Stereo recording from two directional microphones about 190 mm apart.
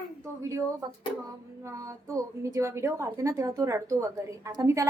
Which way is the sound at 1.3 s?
15° right (ahead or behind).